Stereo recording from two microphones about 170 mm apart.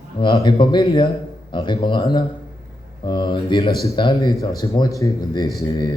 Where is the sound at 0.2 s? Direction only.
25° left (ahead or behind).